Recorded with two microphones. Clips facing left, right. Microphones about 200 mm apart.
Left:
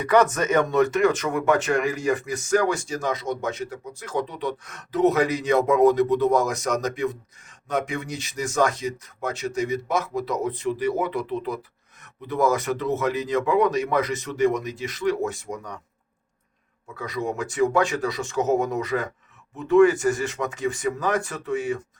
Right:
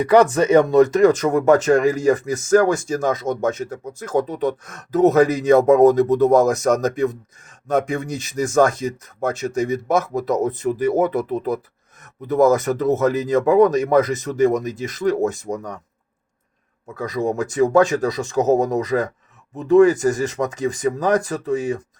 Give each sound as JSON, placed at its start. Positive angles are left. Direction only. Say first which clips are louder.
{"t": 0.0, "sound": "speech", "louder": "right 5 dB", "side_deg": -30}
{"t": 16.9, "sound": "speech", "louder": "right 6 dB", "side_deg": -40}